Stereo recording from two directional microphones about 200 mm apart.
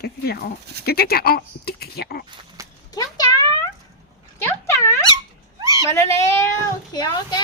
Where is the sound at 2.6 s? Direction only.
15° right (ahead or behind).